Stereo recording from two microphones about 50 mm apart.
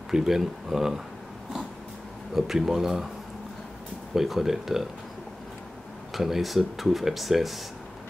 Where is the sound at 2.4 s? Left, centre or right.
Centre.